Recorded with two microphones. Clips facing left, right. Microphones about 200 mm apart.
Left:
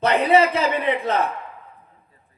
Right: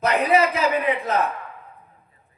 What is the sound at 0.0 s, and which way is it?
Speech, 30° left (ahead or behind).